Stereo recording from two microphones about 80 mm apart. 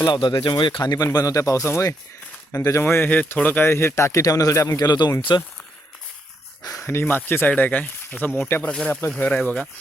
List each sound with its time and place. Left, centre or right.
0.1 s speech: left
2.8 s speech: left
4.8 s speech: left
6.6 s a sound: left
6.8 s speech: left